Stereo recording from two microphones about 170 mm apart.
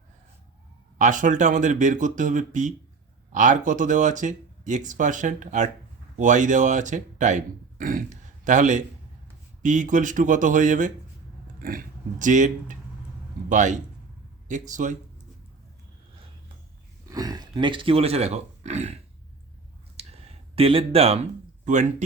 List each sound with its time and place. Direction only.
0.9 s speech: 45° right (ahead or behind)
12.2 s speech: 50° right (ahead or behind)
17.1 s a sound: 20° right (ahead or behind)
17.5 s speech: 30° right (ahead or behind)
20.0 s a sound: 40° right (ahead or behind)
20.6 s speech: 35° right (ahead or behind)